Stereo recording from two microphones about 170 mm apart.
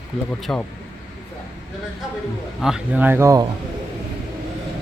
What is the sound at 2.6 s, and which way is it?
Speech, 5° right (ahead or behind).